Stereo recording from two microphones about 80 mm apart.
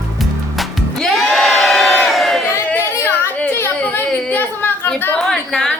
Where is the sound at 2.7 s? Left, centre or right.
Left.